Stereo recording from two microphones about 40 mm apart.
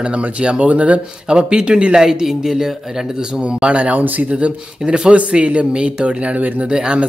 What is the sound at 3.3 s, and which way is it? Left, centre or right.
Speech, right.